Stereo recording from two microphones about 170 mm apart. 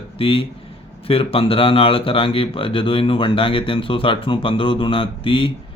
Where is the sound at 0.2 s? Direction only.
35° left (ahead or behind).